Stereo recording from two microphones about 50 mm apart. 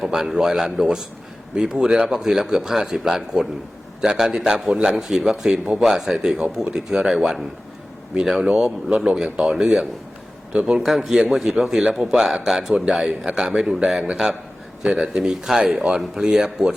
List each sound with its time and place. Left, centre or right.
0.0 s speech: centre
10.8 s a man's voice: centre